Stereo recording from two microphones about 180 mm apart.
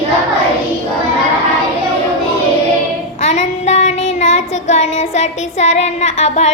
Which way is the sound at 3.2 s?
40° left (ahead or behind).